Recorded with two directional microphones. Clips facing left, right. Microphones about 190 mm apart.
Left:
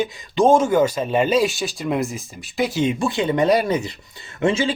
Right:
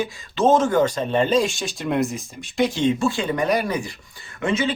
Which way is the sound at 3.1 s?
20° left (ahead or behind).